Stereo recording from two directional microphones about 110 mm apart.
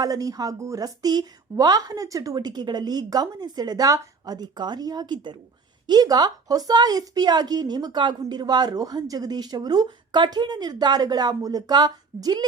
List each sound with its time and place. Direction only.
0.0 s a woman's voice: 35° right (ahead or behind)